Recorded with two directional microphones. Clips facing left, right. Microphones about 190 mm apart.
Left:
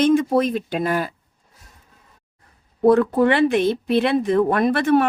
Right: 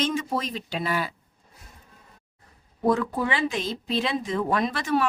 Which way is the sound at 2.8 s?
55° left (ahead or behind).